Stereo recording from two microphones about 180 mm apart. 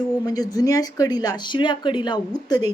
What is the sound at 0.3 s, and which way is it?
Speech, 20° left (ahead or behind).